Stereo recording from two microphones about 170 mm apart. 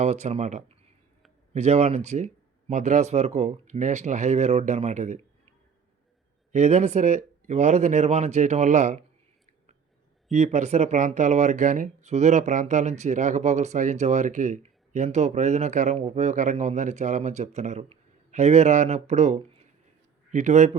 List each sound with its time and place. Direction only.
0.0 s speech: 40° right (ahead or behind)
6.5 s speech: 45° right (ahead or behind)
10.3 s speech: 45° right (ahead or behind)